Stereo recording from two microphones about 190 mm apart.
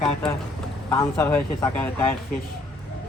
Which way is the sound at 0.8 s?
15° left (ahead or behind).